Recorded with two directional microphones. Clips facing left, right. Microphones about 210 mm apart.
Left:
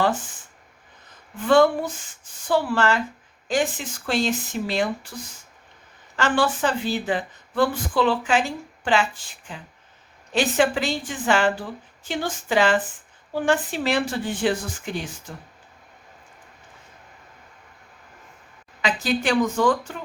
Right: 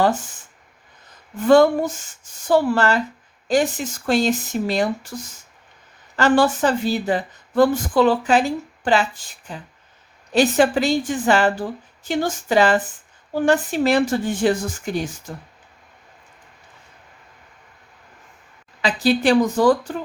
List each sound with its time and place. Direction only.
1.4 s speech: 40° right (ahead or behind)
18.8 s speech: 35° right (ahead or behind)